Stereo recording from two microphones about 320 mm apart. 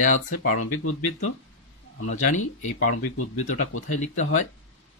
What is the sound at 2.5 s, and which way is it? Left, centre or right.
Speech, left.